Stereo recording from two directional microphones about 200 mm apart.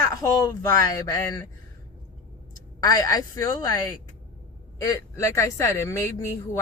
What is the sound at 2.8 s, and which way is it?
Speech, 20° left (ahead or behind).